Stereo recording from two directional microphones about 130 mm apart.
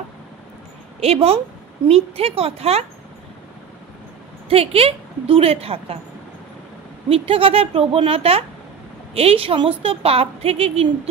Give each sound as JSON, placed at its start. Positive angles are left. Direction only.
{"t": 1.0, "sound": "a woman's voice", "side_deg": -50}
{"t": 4.5, "sound": "a woman's voice", "side_deg": -45}
{"t": 7.1, "sound": "a woman's voice", "side_deg": -45}